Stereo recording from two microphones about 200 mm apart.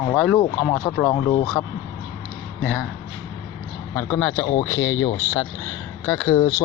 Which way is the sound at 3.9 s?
10° left (ahead or behind).